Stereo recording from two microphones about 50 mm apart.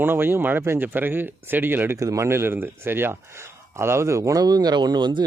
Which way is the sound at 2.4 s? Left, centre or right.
Right.